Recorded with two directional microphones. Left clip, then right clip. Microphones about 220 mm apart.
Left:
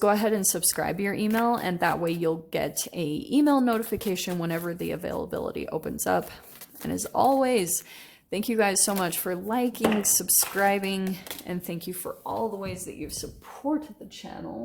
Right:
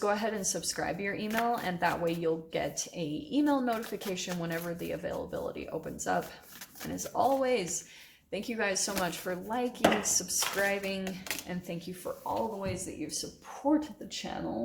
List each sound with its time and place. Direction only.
0.0 s speech: 55° left (ahead or behind)
12.6 s speech: 40° left (ahead or behind)